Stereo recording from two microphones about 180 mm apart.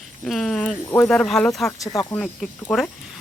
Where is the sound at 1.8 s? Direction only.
20° left (ahead or behind).